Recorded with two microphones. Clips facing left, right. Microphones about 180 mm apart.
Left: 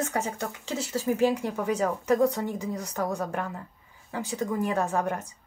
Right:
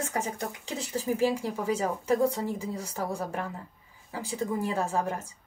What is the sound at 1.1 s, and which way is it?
Speech, 30° right (ahead or behind).